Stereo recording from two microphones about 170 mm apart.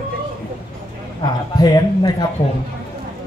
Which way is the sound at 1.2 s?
25° left (ahead or behind).